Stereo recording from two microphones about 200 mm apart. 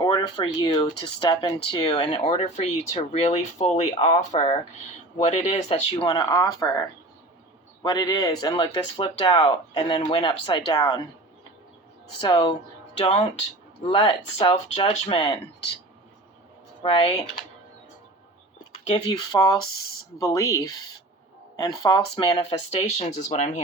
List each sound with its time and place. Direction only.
0.0 s speech: 20° left (ahead or behind)
12.2 s speech: 20° left (ahead or behind)
13.8 s speech: 25° left (ahead or behind)
16.8 s speech: 25° left (ahead or behind)
18.9 s speech: 20° left (ahead or behind)